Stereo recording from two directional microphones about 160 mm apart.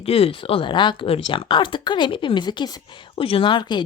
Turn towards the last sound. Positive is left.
turn(degrees=30)  # may be behind; listen again after turning